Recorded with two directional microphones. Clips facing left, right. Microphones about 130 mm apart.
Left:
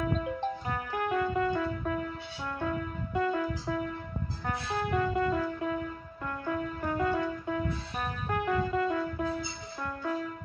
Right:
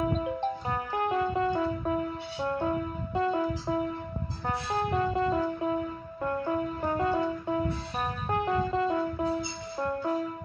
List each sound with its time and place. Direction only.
0.0 s music: 30° right (ahead or behind)